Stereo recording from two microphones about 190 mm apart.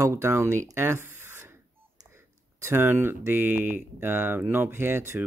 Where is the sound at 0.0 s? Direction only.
15° right (ahead or behind).